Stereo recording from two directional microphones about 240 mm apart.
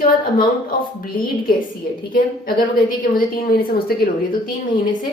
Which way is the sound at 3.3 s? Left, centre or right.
Left.